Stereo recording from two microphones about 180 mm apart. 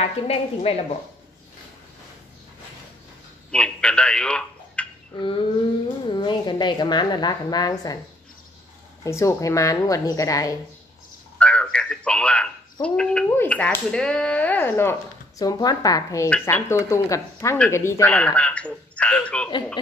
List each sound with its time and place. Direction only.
0.0 s a woman's voice: 35° left (ahead or behind)
3.5 s speech: 5° left (ahead or behind)
6.0 s a woman's voice: 25° left (ahead or behind)
9.0 s a woman's voice: 15° left (ahead or behind)
11.3 s a man's voice: 5° left (ahead or behind)